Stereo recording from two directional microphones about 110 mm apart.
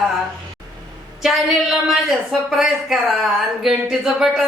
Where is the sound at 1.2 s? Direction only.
5° right (ahead or behind).